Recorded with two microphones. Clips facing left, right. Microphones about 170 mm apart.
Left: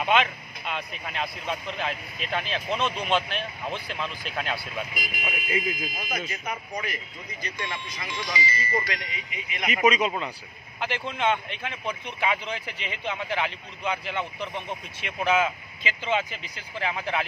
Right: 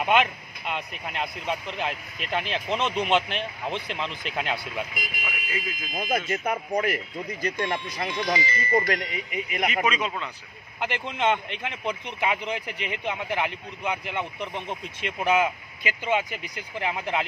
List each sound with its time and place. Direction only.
0.0 s a man's voice: 15° right (ahead or behind)
5.2 s speech: 25° left (ahead or behind)
6.1 s speech: 50° right (ahead or behind)
9.8 s a man's voice: 10° left (ahead or behind)
10.8 s a man's voice: 15° right (ahead or behind)